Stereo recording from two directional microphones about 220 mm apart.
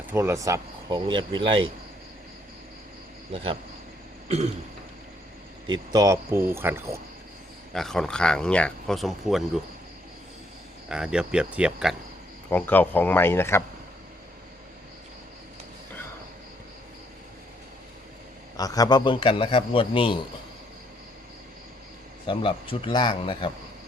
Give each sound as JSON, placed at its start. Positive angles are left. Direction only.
{"t": 0.1, "sound": "speech", "side_deg": -10}
{"t": 3.3, "sound": "speech", "side_deg": -25}
{"t": 5.6, "sound": "speech", "side_deg": -20}
{"t": 7.7, "sound": "speech", "side_deg": 0}
{"t": 10.8, "sound": "speech", "side_deg": -5}
{"t": 12.5, "sound": "speech", "side_deg": 10}
{"t": 18.5, "sound": "a man's voice", "side_deg": 15}
{"t": 22.3, "sound": "a man's voice", "side_deg": 25}